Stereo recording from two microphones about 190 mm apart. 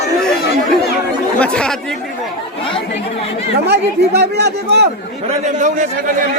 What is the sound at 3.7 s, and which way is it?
Speech, 60° right (ahead or behind).